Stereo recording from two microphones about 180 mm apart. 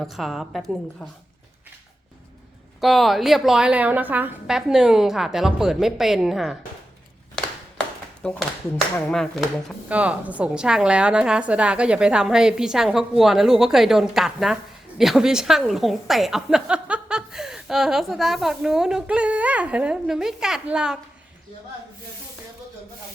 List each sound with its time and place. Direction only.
0.0 s a woman's voice: centre (ahead or behind)
2.8 s a woman's voice: centre (ahead or behind)
7.3 s a sound: 5° left (ahead or behind)
9.0 s a woman's voice: 5° left (ahead or behind)